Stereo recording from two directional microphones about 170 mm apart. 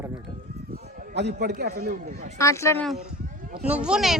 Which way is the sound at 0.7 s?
80° right.